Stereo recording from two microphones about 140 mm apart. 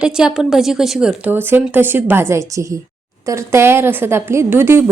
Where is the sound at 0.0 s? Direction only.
5° right (ahead or behind).